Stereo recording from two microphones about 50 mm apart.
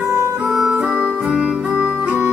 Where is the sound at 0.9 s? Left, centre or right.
Right.